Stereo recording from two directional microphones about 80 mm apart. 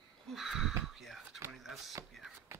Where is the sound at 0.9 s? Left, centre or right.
Centre.